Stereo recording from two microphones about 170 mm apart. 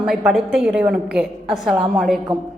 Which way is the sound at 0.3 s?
5° right (ahead or behind).